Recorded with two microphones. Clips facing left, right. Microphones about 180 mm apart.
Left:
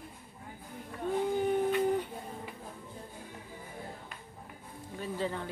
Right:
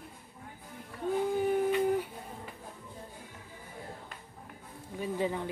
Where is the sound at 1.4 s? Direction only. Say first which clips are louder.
Right 1 dB; 5° right (ahead or behind).